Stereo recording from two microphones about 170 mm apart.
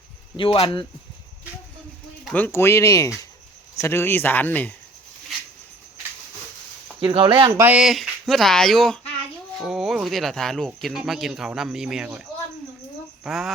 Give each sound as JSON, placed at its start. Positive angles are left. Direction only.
{"t": 0.3, "sound": "speech", "side_deg": 30}
{"t": 2.3, "sound": "speech", "side_deg": 10}
{"t": 7.0, "sound": "speech", "side_deg": -25}
{"t": 7.6, "sound": "speech", "side_deg": -5}